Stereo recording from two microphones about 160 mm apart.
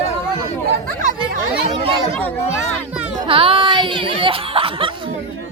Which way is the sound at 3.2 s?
35° right (ahead or behind).